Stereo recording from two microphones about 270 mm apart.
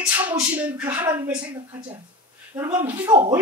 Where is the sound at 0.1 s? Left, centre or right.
Centre.